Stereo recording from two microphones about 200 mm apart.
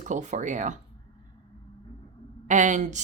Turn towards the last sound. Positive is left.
turn(degrees=-40)  # may be behind; listen again after turning